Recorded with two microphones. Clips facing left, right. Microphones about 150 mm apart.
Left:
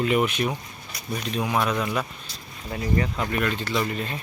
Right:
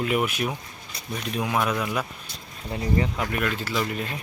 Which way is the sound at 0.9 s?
30° right (ahead or behind).